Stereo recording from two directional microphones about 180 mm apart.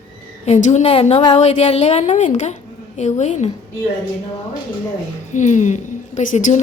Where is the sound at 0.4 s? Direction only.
40° left (ahead or behind).